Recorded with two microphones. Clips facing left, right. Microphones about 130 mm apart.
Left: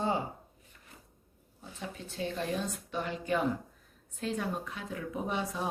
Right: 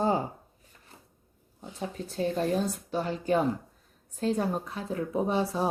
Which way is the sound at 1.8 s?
35° right (ahead or behind).